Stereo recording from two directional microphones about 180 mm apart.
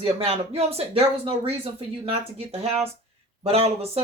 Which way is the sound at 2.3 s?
35° right (ahead or behind).